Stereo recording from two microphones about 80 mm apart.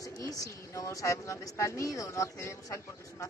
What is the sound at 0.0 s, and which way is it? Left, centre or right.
Speech, left.